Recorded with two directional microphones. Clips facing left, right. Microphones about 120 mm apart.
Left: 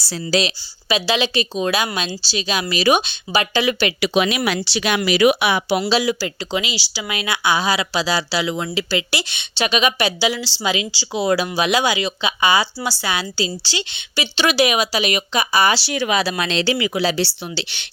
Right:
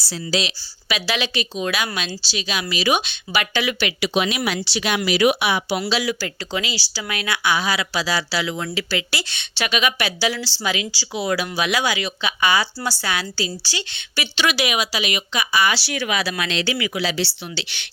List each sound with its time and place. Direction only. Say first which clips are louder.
0.1 s a woman's voice: left 4 dB; 45° left (ahead or behind)
0.9 s speech: left 5 dB; 25° left (ahead or behind)
4.0 s speech: left 3 dB; 75° left (ahead or behind); by 5.8 s 60° left (ahead or behind)
5.9 s speech: left 4 dB; 25° left (ahead or behind)
14.3 s speech: left 4 dB; 35° left (ahead or behind)
15.8 s speech: left 4 dB; 25° left (ahead or behind)